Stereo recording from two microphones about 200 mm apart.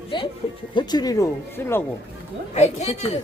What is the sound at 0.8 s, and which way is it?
Speech, 20° left (ahead or behind).